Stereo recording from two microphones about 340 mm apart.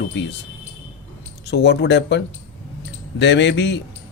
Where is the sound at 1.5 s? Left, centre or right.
Left.